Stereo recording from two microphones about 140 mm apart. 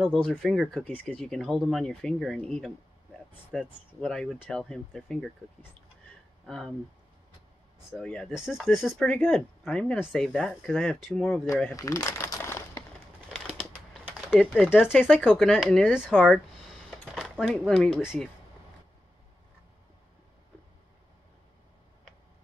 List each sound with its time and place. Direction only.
0.0 s speech: centre (ahead or behind)
6.4 s speech: centre (ahead or behind)
8.0 s speech: 5° left (ahead or behind)
8.8 s speech: 10° left (ahead or behind)
11.7 s crumpling: 25° left (ahead or behind)
13.3 s a sound: centre (ahead or behind)
14.0 s typing: 5° right (ahead or behind)
14.5 s speech: 10° left (ahead or behind)